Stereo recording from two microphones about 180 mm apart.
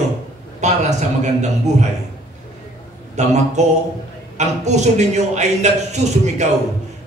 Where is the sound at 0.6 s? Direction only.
40° right (ahead or behind).